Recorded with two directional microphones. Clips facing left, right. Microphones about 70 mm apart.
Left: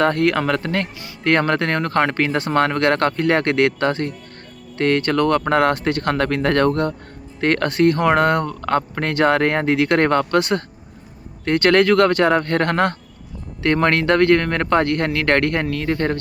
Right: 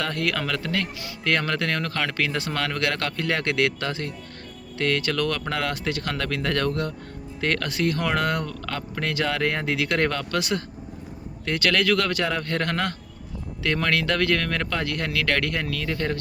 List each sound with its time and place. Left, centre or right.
0.0 s speech: left